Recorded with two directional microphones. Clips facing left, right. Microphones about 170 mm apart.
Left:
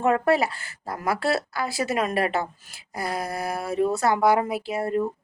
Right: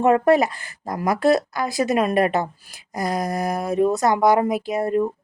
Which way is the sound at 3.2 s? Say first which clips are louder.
Right 5 dB; 15° right (ahead or behind).